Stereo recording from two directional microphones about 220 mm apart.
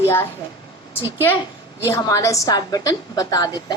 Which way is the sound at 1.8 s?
15° left (ahead or behind).